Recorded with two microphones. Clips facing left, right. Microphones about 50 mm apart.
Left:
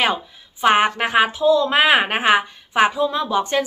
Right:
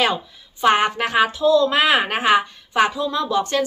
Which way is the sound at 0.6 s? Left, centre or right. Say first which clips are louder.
Left 1 dB; centre.